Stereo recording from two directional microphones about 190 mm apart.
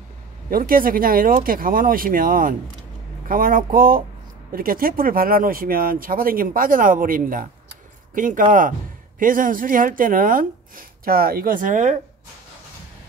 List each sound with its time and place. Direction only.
0.5 s speech: 50° right (ahead or behind)